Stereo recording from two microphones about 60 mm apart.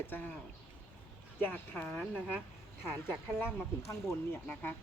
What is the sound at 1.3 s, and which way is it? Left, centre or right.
Speech, left.